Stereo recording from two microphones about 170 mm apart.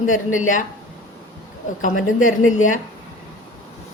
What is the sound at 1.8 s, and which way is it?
A woman's voice, 50° left (ahead or behind).